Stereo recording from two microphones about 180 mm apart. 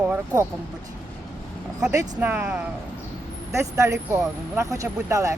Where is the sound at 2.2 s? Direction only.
10° right (ahead or behind).